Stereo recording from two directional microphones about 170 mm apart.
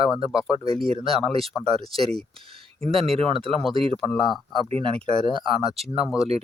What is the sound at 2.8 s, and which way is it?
Speech, 35° right (ahead or behind).